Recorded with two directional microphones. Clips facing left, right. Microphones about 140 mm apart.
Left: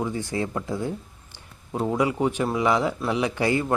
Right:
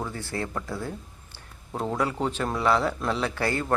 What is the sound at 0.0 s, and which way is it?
Speech, 15° left (ahead or behind).